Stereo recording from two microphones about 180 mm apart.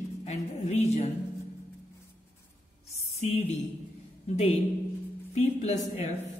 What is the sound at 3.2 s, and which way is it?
Speech, 35° left (ahead or behind).